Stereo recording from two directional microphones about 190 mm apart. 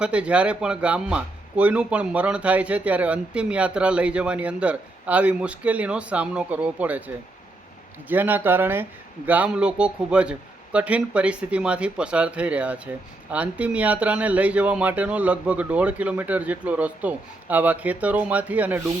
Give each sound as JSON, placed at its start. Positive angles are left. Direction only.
{"t": 0.0, "sound": "speech", "side_deg": -5}
{"t": 8.0, "sound": "speech", "side_deg": -10}